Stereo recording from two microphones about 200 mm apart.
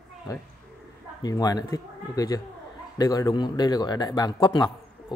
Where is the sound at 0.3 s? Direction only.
20° left (ahead or behind).